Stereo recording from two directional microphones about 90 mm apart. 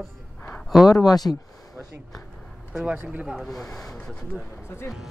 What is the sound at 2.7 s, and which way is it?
Speech, 15° right (ahead or behind).